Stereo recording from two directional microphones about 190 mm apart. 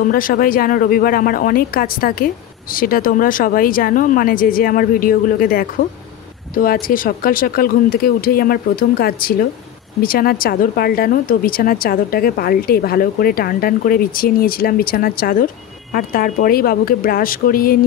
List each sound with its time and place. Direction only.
0.1 s speech: 50° left (ahead or behind)